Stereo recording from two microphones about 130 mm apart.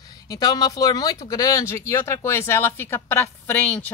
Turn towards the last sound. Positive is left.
turn(degrees=10)  # may be behind; listen again after turning